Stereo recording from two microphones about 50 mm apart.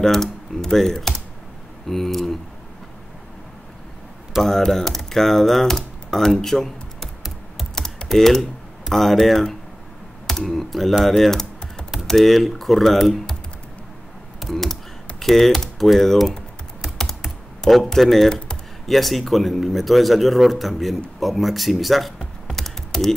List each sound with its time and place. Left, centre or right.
0.0 s speech: centre
4.4 s speech: centre
7.7 s typing: centre
8.2 s speech: centre
11.1 s typing: centre
12.1 s speech: centre
14.4 s computer keyboard: centre
15.1 s speech: centre
17.6 s speech: centre
21.2 s computer keyboard: centre